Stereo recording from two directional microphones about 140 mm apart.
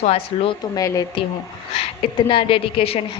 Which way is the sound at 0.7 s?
25° left (ahead or behind).